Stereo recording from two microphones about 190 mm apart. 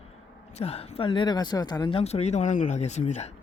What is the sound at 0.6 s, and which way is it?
Speech, 35° left (ahead or behind).